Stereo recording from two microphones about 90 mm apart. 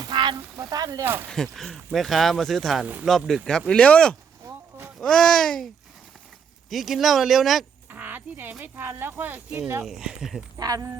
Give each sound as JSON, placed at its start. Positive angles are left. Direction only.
{"t": 0.0, "sound": "frying", "side_deg": -55}
{"t": 0.5, "sound": "speech", "side_deg": -40}
{"t": 1.3, "sound": "speech", "side_deg": 5}
{"t": 6.7, "sound": "speech", "side_deg": 0}
{"t": 7.9, "sound": "speech", "side_deg": -20}
{"t": 9.8, "sound": "speech", "side_deg": -5}
{"t": 10.6, "sound": "speech", "side_deg": -45}